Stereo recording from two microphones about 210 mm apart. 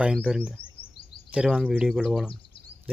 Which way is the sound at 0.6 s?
25° left (ahead or behind).